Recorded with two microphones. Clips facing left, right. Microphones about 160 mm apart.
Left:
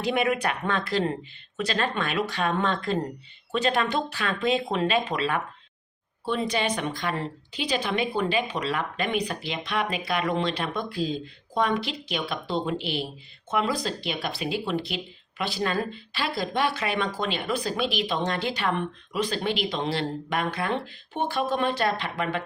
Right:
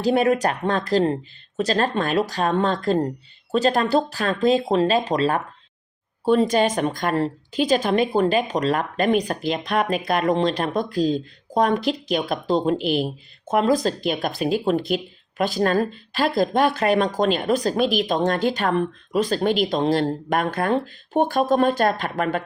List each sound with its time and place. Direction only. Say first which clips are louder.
0.0 s speech: right 6 dB; 40° right (ahead or behind)